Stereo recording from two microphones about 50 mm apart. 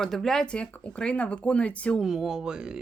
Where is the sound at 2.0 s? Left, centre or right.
Centre.